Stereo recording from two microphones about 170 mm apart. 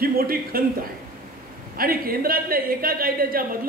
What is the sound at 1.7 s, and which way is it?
A man's voice, 60° right (ahead or behind).